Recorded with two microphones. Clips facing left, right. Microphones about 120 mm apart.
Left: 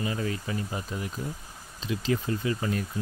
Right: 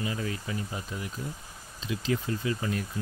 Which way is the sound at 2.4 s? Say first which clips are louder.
Left 1 dB; 35° left (ahead or behind).